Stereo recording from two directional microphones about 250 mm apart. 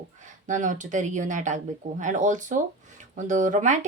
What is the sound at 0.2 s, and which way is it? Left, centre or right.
Speech, right.